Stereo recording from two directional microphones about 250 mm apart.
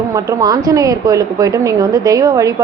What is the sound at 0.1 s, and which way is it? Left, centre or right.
A woman's voice, centre.